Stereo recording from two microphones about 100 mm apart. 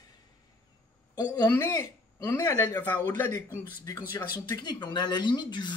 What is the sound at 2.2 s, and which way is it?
Speech, 30° left (ahead or behind).